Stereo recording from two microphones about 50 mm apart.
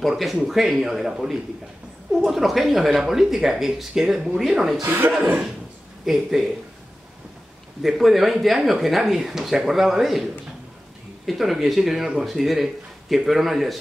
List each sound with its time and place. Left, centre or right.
0.2 s speech: centre
4.8 s speech: right
6.0 s speech: centre
7.8 s speech: centre
11.2 s speech: centre